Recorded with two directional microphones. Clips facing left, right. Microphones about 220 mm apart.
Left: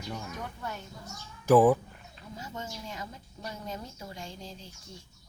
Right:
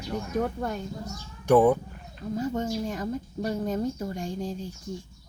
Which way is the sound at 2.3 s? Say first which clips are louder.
Right 13 dB; 50° right (ahead or behind).